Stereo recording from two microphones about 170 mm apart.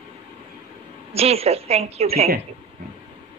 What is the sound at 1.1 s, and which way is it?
A woman's voice, 35° right (ahead or behind).